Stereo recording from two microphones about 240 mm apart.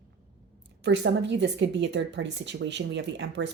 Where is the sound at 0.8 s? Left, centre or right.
Right.